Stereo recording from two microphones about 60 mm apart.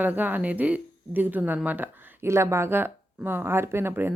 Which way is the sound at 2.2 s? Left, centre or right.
Right.